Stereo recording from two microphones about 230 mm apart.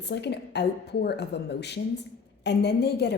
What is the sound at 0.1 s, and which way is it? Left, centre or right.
Speech, left.